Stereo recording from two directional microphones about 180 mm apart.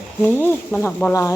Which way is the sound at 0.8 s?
15° left (ahead or behind).